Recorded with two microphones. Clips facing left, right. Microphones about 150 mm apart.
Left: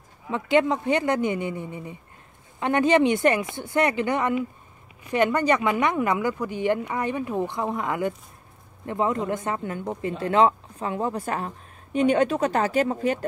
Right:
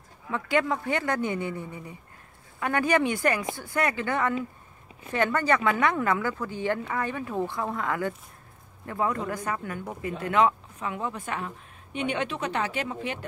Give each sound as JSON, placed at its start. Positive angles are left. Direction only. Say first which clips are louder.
{"t": 0.3, "sound": "a woman's voice", "louder": "left 5 dB", "side_deg": 20}